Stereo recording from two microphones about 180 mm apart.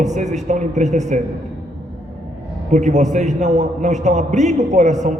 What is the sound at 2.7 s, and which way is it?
A man's voice, 40° right (ahead or behind).